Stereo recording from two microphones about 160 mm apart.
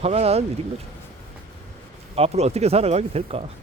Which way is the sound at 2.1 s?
40° right (ahead or behind).